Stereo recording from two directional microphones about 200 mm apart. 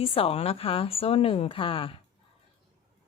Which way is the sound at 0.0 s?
30° left (ahead or behind).